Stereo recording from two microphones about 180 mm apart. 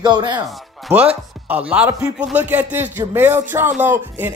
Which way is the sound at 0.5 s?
5° right (ahead or behind).